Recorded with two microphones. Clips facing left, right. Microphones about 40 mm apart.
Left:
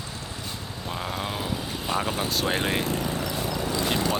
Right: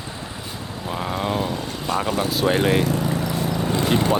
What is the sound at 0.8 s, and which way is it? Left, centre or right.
Vehicle, centre.